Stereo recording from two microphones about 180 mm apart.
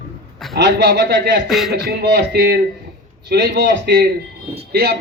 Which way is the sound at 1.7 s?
60° right (ahead or behind).